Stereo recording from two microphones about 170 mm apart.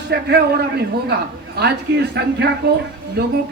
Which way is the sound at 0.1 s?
75° right (ahead or behind).